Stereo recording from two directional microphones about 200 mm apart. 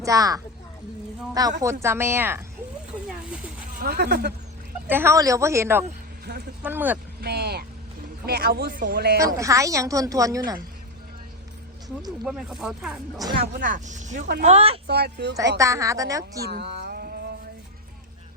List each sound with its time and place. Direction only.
0.0 s a woman's voice: 15° right (ahead or behind)
3.7 s speech: 50° right (ahead or behind)
4.9 s a woman's voice: 10° right (ahead or behind)
7.2 s vehicle: 55° right (ahead or behind)
8.3 s speech: 50° right (ahead or behind)
9.2 s a woman's voice: 15° right (ahead or behind)
12.2 s speech: 5° right (ahead or behind)
13.4 s speech: 40° right (ahead or behind)
14.8 s speech: 55° right (ahead or behind)
15.5 s a woman's voice: 15° right (ahead or behind)
16.5 s a sound: 55° right (ahead or behind)